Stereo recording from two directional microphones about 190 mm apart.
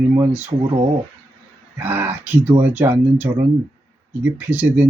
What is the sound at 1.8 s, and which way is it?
Speech, 10° right (ahead or behind).